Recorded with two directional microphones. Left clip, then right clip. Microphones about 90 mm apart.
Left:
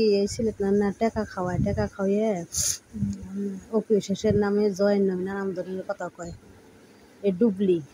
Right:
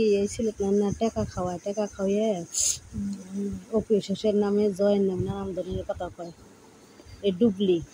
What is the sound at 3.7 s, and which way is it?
Speech, 20° left (ahead or behind).